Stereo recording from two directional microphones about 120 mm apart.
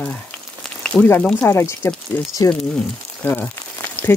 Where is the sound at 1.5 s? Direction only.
20° left (ahead or behind).